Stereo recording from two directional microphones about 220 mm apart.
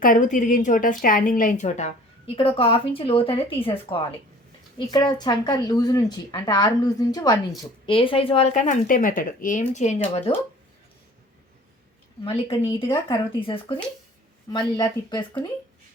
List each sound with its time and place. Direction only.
0.0 s a woman's voice: 35° left (ahead or behind)
12.2 s speech: 25° left (ahead or behind)